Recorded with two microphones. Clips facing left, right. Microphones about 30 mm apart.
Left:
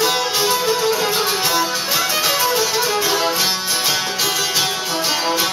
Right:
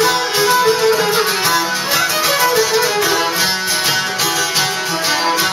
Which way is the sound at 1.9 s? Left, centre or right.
Right.